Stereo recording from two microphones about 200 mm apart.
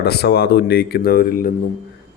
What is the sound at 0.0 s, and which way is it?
Speech, 55° left (ahead or behind).